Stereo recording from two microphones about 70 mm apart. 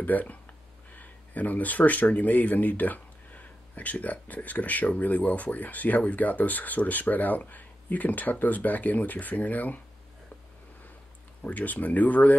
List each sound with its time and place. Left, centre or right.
0.0 s speech: left
11.4 s speech: left